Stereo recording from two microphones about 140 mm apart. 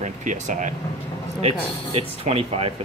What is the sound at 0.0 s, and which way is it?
Speech, 60° right (ahead or behind).